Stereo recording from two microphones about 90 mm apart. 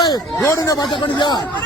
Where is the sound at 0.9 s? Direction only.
60° left (ahead or behind).